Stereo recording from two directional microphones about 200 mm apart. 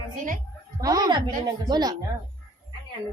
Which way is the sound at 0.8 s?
20° right (ahead or behind).